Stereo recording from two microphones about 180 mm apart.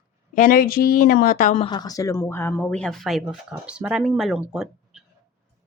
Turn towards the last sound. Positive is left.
turn(degrees=0)  # may be behind; listen again after turning